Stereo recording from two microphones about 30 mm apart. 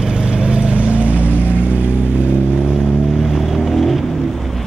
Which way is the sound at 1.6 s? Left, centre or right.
Right.